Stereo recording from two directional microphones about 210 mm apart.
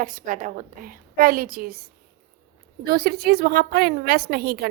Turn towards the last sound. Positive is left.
turn(degrees=-50)  # may be behind; listen again after turning